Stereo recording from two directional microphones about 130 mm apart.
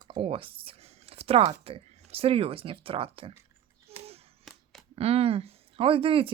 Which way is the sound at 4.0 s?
50° right (ahead or behind).